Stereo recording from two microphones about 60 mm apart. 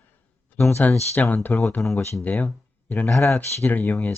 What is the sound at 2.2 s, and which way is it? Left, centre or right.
Speech, left.